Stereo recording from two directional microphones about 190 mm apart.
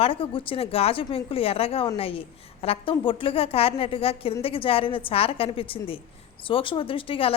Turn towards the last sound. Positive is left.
turn(degrees=30)  # may be behind; listen again after turning